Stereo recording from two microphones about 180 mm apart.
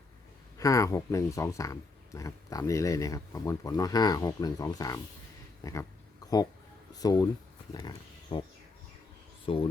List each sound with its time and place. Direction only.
0.6 s speech: 20° left (ahead or behind)
6.9 s speech: 20° left (ahead or behind)
9.5 s speech: 30° left (ahead or behind)